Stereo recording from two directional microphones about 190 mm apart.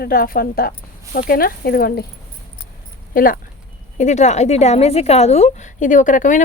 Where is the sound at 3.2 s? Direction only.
50° left (ahead or behind).